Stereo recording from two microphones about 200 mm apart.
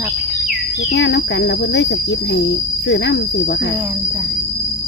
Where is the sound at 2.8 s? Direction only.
60° left (ahead or behind).